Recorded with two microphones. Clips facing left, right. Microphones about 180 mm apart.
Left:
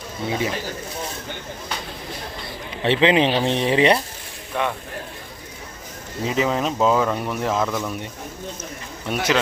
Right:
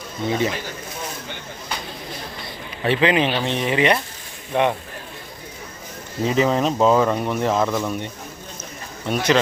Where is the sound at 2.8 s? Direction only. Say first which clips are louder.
Left 1 dB; 25° left (ahead or behind).